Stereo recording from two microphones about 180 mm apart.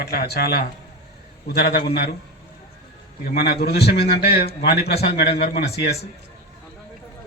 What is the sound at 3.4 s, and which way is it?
A man's voice, 60° left (ahead or behind).